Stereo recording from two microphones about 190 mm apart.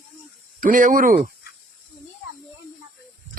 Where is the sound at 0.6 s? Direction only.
45° right (ahead or behind).